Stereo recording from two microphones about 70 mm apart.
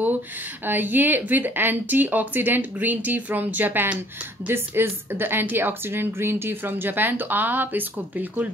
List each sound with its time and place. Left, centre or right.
0.7 s speech: right